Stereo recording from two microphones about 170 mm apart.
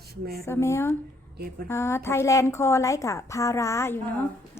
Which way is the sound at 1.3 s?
65° right (ahead or behind).